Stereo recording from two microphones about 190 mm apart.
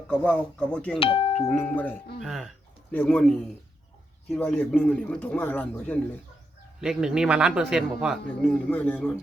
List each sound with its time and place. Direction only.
0.1 s a man's voice: 5° left (ahead or behind)
0.9 s speech: 25° left (ahead or behind)
1.5 s a man's voice: 10° left (ahead or behind)
6.8 s a man's voice: 5° right (ahead or behind)